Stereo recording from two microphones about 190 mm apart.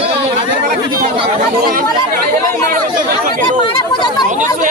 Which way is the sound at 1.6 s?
50° right (ahead or behind).